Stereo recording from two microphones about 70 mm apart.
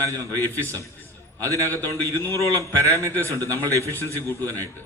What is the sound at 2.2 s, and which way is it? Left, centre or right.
Speech, left.